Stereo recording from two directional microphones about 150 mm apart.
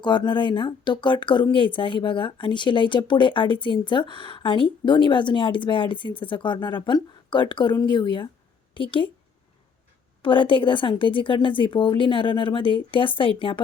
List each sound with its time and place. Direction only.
0.0 s speech: 30° left (ahead or behind)
10.2 s speech: 35° left (ahead or behind)